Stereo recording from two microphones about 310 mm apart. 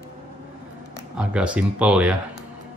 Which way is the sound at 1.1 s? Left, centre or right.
Centre.